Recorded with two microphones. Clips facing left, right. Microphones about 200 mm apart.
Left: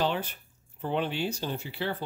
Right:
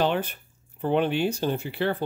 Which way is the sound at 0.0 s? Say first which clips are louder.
Right 4 dB; 60° right (ahead or behind).